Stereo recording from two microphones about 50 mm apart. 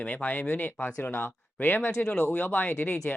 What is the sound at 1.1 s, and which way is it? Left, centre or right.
Speech, left.